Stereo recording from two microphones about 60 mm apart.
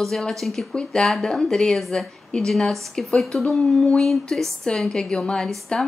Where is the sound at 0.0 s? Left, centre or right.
Centre.